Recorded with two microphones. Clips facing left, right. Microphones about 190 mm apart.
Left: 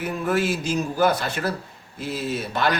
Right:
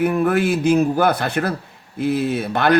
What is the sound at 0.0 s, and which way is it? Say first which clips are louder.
Speech: right 6 dB; 60° right (ahead or behind).